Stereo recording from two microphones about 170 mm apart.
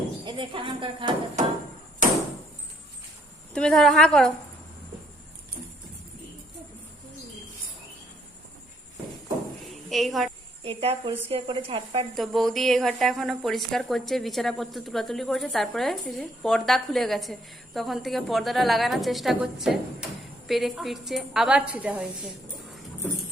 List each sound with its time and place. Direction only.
0.3 s speech: 30° right (ahead or behind)
3.5 s speech: 5° left (ahead or behind)
9.9 s a woman's voice: centre (ahead or behind)
10.6 s a woman's voice: 35° right (ahead or behind)
12.1 s speech: centre (ahead or behind)